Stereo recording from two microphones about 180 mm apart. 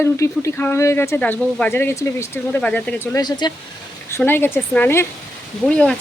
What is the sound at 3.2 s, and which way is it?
Speech, 25° left (ahead or behind).